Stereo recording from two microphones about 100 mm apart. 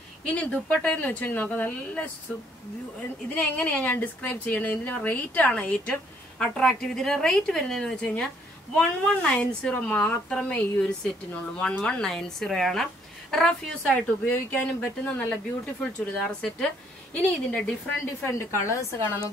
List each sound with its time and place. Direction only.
0.2 s a woman's voice: 15° left (ahead or behind)
3.3 s a woman's voice: 15° left (ahead or behind)
13.9 s a woman's voice: 15° left (ahead or behind)